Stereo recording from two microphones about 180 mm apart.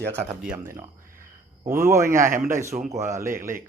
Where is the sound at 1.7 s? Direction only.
15° right (ahead or behind).